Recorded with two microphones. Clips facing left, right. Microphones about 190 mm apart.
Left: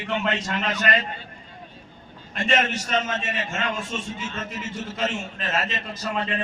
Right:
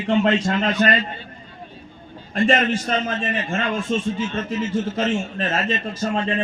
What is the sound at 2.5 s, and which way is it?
A man's voice, 35° right (ahead or behind).